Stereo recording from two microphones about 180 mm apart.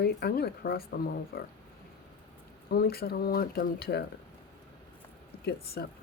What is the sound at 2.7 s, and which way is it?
Speech, 60° left (ahead or behind).